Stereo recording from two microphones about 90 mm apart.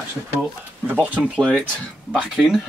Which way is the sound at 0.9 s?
15° right (ahead or behind).